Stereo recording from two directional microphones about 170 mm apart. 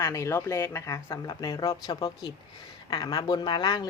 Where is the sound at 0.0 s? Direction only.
20° left (ahead or behind).